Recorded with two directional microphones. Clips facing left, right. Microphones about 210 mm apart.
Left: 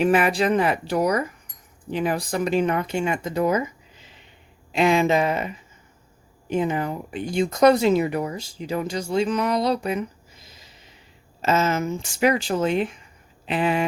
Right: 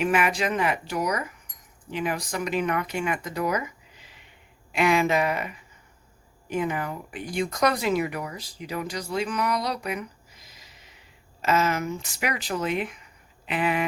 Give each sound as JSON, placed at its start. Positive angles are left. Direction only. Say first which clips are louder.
{"t": 0.0, "sound": "speech", "louder": "left 5 dB", "side_deg": 35}